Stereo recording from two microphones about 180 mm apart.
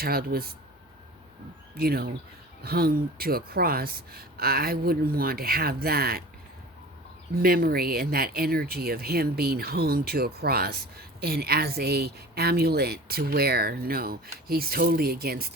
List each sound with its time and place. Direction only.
0.0 s speech: 55° right (ahead or behind)
1.7 s speech: 60° right (ahead or behind)
7.3 s speech: 55° right (ahead or behind)